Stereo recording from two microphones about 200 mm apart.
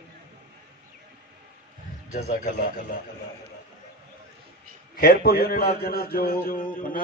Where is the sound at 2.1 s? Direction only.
40° left (ahead or behind).